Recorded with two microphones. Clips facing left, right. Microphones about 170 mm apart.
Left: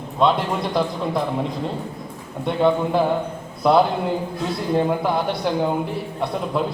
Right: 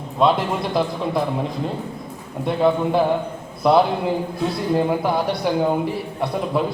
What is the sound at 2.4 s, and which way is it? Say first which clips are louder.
A man's voice: even; centre (ahead or behind).